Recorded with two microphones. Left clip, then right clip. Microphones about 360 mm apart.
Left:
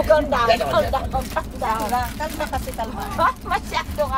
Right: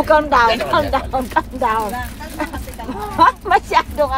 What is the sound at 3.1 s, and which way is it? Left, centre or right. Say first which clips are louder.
Speech: right 8 dB; right.